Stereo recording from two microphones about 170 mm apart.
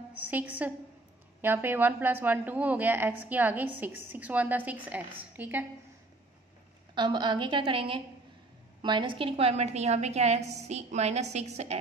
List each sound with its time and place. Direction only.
0.1 s a woman's voice: 10° right (ahead or behind)
7.0 s a woman's voice: 25° right (ahead or behind)